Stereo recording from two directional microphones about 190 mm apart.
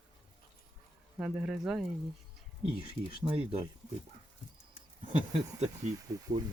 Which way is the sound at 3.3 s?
30° right (ahead or behind).